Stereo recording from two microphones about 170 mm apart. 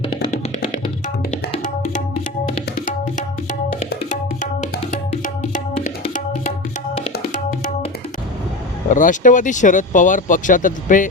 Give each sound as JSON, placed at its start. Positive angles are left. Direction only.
{"t": 4.9, "sound": "music", "side_deg": 50}
{"t": 7.3, "sound": "tabla", "side_deg": 50}
{"t": 8.9, "sound": "speech", "side_deg": 50}